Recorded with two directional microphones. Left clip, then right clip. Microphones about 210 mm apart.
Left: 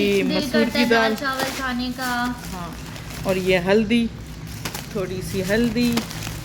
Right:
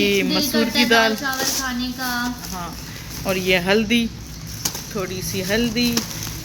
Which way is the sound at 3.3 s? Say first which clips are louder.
Even; centre (ahead or behind).